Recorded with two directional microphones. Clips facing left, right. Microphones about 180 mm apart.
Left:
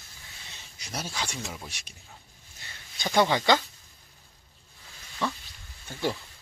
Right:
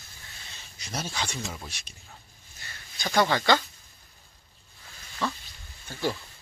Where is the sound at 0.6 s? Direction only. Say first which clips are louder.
Right 2 dB; 15° left (ahead or behind).